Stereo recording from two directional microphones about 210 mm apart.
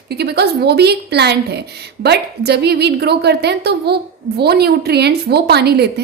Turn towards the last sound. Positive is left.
turn(degrees=-50)  # may be behind; listen again after turning